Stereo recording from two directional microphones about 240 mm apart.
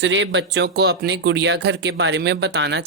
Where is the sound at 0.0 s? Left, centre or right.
Right.